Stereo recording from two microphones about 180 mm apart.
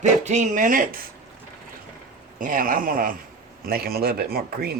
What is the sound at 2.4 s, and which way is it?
Speech, 50° right (ahead or behind).